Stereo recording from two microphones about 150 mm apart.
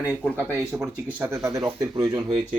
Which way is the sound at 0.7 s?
5° right (ahead or behind).